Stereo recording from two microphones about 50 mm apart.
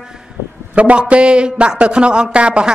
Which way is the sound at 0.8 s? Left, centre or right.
Right.